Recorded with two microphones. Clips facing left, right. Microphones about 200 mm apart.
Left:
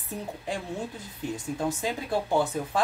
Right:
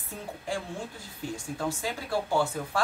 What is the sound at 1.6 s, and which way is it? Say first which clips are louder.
Speech: left 2 dB; 20° left (ahead or behind).